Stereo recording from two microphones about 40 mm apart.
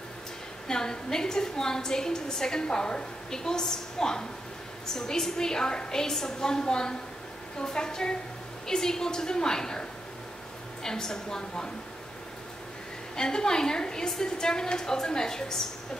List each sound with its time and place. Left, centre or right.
0.7 s a woman's voice: centre
13.1 s a woman's voice: centre